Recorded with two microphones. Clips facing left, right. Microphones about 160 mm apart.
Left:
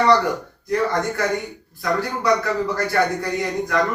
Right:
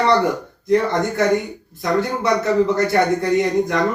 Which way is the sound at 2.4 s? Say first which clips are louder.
Right 6 dB; 25° right (ahead or behind).